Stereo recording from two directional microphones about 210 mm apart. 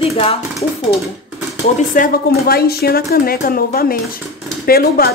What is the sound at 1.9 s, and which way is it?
Speech, 45° left (ahead or behind).